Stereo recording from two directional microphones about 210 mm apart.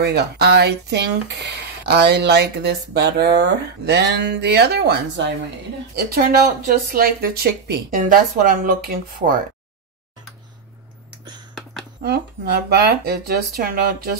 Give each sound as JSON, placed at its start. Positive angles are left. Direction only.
{"t": 0.0, "sound": "speech", "side_deg": -50}
{"t": 12.0, "sound": "speech", "side_deg": -50}